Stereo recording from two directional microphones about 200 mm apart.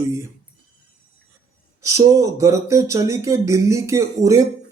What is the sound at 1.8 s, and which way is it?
Speech, 15° right (ahead or behind).